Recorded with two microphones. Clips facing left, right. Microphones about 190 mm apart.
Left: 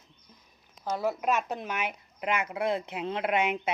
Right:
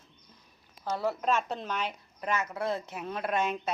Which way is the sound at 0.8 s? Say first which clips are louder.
Left 1 dB; 15° left (ahead or behind).